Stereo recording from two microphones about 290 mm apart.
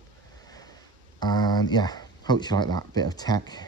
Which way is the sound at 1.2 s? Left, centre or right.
Centre.